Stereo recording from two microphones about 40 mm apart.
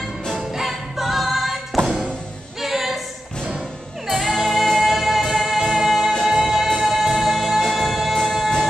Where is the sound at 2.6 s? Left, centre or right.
Centre.